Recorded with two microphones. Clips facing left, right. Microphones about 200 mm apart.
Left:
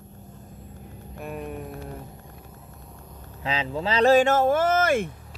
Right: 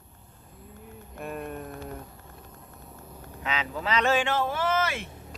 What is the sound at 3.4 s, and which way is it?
Speech, 30° left (ahead or behind).